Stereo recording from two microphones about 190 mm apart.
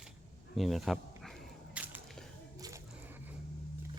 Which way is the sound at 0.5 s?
Centre (ahead or behind).